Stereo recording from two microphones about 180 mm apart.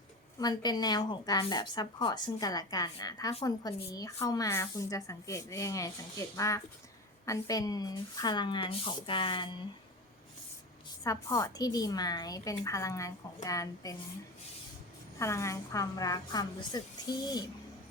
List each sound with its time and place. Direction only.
0.3 s a woman's voice: 20° left (ahead or behind)
11.0 s a woman's voice: 20° left (ahead or behind)
15.2 s a woman's voice: 15° left (ahead or behind)